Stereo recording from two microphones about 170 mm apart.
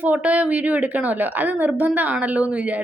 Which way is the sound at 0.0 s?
10° right (ahead or behind).